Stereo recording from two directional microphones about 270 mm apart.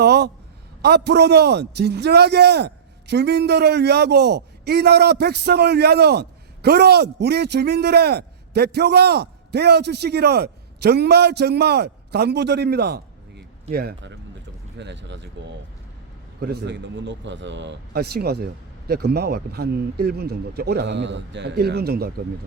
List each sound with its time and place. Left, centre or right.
0.0 s a sound: right
0.8 s a man's voice: right
16.4 s a man's voice: right